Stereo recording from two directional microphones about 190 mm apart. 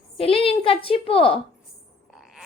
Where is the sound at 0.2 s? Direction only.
30° left (ahead or behind).